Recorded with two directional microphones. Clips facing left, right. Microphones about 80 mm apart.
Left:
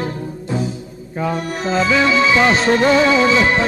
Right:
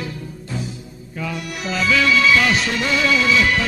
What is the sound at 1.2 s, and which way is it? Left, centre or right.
Music, left.